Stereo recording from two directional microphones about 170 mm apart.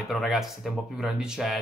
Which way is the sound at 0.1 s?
Centre (ahead or behind).